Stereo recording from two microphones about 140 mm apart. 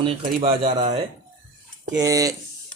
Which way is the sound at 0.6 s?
55° right (ahead or behind).